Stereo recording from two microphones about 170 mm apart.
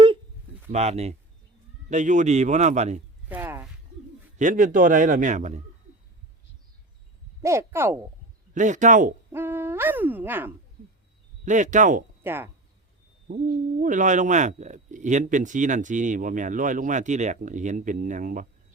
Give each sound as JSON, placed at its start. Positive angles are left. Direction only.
{"t": 0.7, "sound": "speech", "side_deg": -40}
{"t": 3.2, "sound": "a sound", "side_deg": -10}
{"t": 4.4, "sound": "speech", "side_deg": -50}
{"t": 7.4, "sound": "speech", "side_deg": -15}
{"t": 8.5, "sound": "speech", "side_deg": -45}
{"t": 9.3, "sound": "speech", "side_deg": -15}
{"t": 11.4, "sound": "speech", "side_deg": -45}
{"t": 12.2, "sound": "speech", "side_deg": -15}
{"t": 13.2, "sound": "speech", "side_deg": -55}